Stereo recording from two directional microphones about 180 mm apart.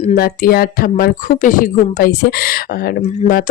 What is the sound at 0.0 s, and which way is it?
Speech, 50° left (ahead or behind).